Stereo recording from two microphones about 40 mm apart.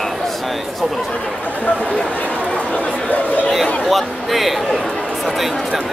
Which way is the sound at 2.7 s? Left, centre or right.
Left.